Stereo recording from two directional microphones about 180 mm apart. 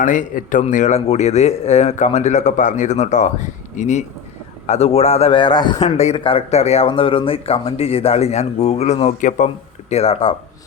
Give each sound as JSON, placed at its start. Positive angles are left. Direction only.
{"t": 0.0, "sound": "a man's voice", "side_deg": 45}